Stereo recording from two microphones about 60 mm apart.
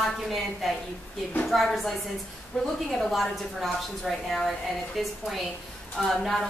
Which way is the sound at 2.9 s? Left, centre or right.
Centre.